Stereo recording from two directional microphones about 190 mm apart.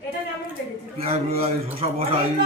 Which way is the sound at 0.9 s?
30° right (ahead or behind).